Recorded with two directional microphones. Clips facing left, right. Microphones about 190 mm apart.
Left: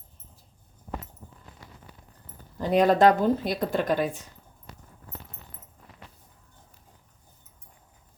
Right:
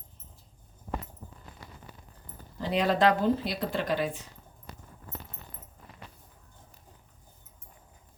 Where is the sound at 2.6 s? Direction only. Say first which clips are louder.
Left 6 dB; 45° left (ahead or behind).